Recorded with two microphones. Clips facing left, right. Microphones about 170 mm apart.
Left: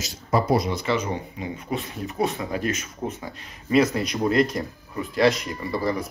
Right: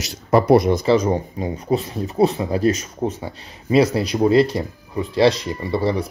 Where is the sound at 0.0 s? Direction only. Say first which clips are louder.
Right 6 dB; 65° right (ahead or behind).